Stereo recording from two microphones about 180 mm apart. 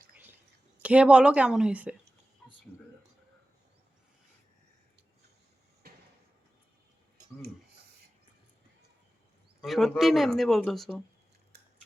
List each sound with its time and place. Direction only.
0.8 s a woman's voice: 5° right (ahead or behind)
5.8 s a sound: 60° right (ahead or behind)
9.6 s a man's voice: centre (ahead or behind)